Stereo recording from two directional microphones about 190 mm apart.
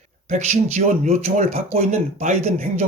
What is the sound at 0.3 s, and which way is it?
Speech, 40° right (ahead or behind).